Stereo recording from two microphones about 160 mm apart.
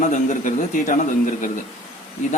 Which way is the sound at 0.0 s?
50° left (ahead or behind).